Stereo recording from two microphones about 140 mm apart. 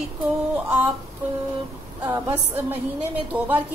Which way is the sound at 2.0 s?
15° right (ahead or behind).